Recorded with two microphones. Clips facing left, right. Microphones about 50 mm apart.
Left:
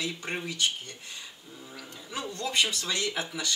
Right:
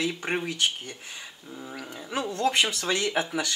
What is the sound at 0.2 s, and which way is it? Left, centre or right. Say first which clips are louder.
Speech: right 4 dB; right.